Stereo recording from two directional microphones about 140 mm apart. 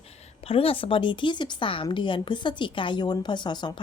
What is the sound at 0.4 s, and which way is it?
A woman's voice, 40° left (ahead or behind).